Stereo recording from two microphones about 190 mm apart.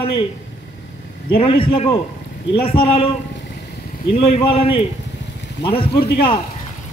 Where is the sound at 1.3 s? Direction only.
30° left (ahead or behind).